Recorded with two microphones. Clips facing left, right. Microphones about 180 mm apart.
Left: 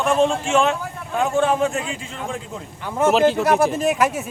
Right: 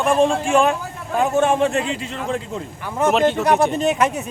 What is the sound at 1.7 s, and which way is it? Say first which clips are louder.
Speech: right 5 dB; 65° right (ahead or behind).